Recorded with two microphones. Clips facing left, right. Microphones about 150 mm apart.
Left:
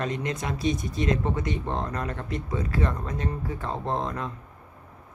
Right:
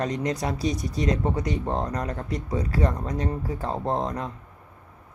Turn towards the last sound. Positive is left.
turn(degrees=-35)  # may be behind; listen again after turning